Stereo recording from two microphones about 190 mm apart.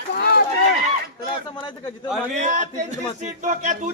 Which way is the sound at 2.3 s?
40° right (ahead or behind).